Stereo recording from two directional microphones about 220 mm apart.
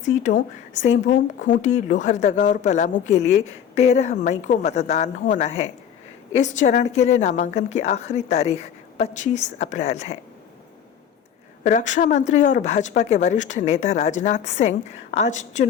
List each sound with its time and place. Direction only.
0.0 s speech: 35° left (ahead or behind)
11.6 s speech: 35° left (ahead or behind)